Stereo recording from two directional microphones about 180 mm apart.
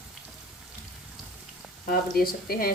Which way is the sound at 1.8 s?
55° left (ahead or behind).